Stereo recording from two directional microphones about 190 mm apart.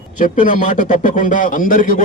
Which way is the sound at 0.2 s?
45° left (ahead or behind).